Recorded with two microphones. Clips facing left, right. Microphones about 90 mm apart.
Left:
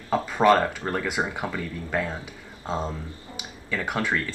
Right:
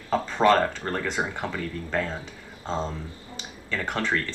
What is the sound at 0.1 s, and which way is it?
Speech, 10° left (ahead or behind).